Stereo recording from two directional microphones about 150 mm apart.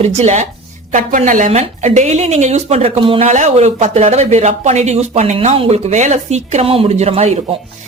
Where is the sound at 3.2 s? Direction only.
50° right (ahead or behind).